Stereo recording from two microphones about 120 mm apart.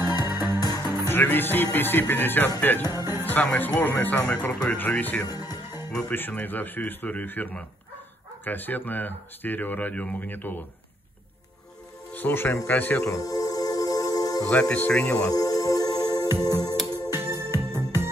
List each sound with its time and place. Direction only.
0.0 s music: 35° left (ahead or behind)
1.0 s speech: 15° left (ahead or behind)
6.1 s speech: 15° left (ahead or behind)
12.1 s a man's voice: 15° left (ahead or behind)
13.1 s music: 30° left (ahead or behind)
14.5 s speech: 10° left (ahead or behind)
15.2 s music: 30° left (ahead or behind)
17.2 s music: 20° right (ahead or behind)